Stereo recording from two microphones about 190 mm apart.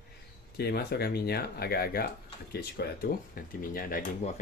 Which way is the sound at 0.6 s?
55° left (ahead or behind).